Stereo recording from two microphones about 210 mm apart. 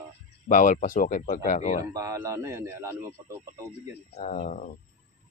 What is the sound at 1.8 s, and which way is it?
Speech, 15° right (ahead or behind).